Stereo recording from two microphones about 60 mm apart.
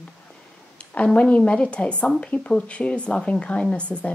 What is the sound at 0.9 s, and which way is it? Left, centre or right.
A woman's voice, centre.